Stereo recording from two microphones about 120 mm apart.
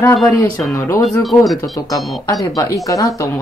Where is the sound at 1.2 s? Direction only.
Centre (ahead or behind).